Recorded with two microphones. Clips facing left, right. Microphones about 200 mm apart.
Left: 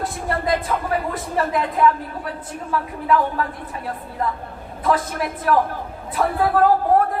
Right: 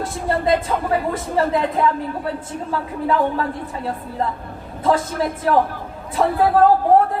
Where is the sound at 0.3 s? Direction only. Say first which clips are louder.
Right 4 dB; 25° right (ahead or behind).